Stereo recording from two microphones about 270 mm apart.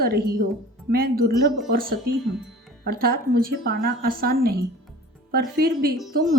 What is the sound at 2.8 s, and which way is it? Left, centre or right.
A woman's voice, right.